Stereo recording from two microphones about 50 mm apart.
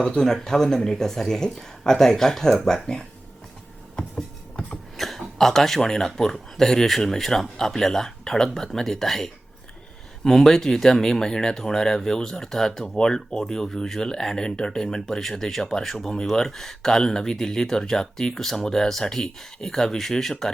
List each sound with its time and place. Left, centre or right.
0.0 s speech: centre
4.7 s speech: centre